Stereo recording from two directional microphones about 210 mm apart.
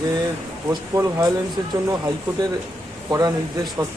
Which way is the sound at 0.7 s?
15° right (ahead or behind).